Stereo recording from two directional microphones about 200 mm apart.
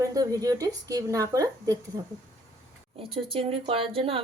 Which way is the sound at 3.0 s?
30° right (ahead or behind).